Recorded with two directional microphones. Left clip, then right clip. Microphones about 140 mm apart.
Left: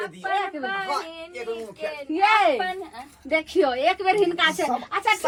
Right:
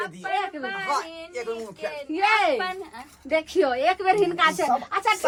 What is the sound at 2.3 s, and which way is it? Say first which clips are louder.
A woman's voice: left 1 dB; centre (ahead or behind).